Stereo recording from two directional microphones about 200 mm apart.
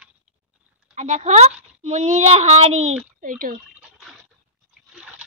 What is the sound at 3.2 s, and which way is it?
Speech, 45° right (ahead or behind).